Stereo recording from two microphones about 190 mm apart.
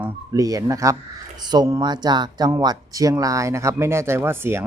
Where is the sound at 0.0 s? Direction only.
20° right (ahead or behind).